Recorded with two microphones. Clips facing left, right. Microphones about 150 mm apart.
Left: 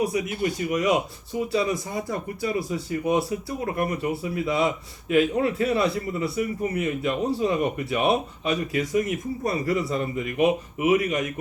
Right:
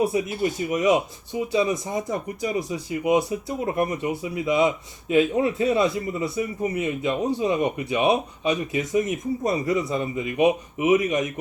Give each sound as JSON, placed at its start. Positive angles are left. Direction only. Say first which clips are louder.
{"t": 0.0, "sound": "speech", "louder": "right 2 dB", "side_deg": -25}